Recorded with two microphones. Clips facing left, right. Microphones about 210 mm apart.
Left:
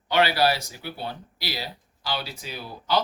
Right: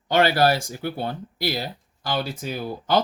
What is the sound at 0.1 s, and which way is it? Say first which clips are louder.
Speech: right 3 dB; 50° right (ahead or behind).